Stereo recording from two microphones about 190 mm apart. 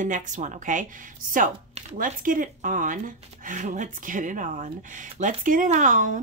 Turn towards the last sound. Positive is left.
turn(degrees=-40)  # may be behind; listen again after turning